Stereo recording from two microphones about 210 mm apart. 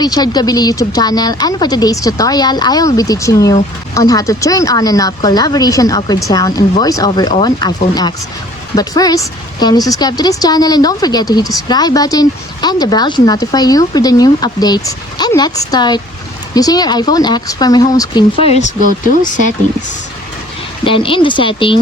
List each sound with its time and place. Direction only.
0.0 s a woman's voice: 20° left (ahead or behind)
20.8 s a woman's voice: 25° left (ahead or behind)